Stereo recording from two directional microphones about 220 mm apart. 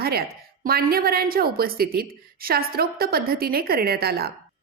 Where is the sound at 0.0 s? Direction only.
45° right (ahead or behind).